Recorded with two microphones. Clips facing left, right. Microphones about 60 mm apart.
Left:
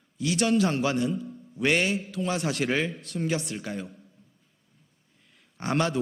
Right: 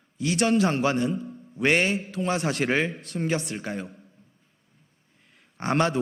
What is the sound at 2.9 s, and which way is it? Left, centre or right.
Speech, right.